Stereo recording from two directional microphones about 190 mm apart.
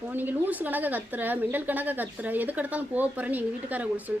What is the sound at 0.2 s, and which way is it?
A woman's voice, 10° right (ahead or behind).